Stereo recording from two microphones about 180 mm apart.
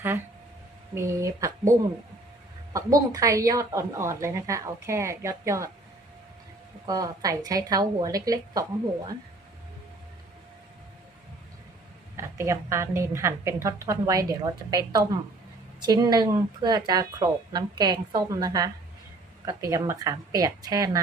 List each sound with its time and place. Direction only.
0.9 s a woman's voice: 15° right (ahead or behind)
2.7 s a woman's voice: 20° right (ahead or behind)
6.8 s speech: 20° right (ahead or behind)
12.1 s a woman's voice: 15° right (ahead or behind)